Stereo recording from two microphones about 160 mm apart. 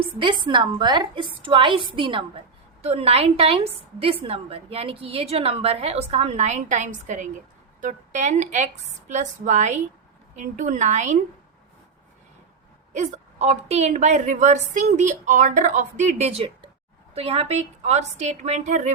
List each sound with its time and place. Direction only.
0.0 s a woman's voice: 30° right (ahead or behind); by 11.2 s 50° right (ahead or behind)
12.9 s a woman's voice: 45° right (ahead or behind)